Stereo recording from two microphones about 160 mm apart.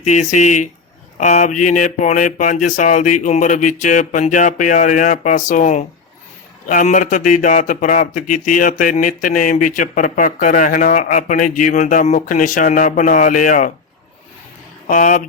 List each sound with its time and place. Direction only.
0.1 s speech: 50° left (ahead or behind)
14.8 s speech: 55° left (ahead or behind)